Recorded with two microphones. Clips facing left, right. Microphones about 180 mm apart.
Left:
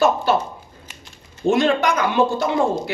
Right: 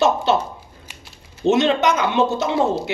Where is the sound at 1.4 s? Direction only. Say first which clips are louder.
Right 1 dB; 20° right (ahead or behind).